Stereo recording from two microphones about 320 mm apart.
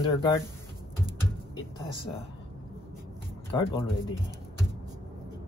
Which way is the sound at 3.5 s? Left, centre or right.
Centre.